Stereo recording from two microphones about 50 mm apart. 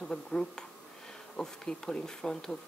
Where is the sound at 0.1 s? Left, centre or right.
Centre.